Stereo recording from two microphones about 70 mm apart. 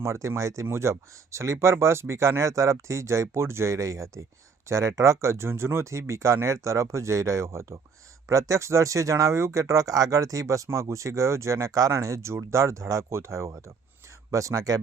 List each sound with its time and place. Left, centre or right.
0.0 s speech: right